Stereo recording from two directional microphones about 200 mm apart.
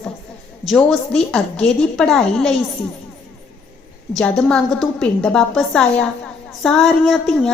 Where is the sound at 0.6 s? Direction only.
Centre (ahead or behind).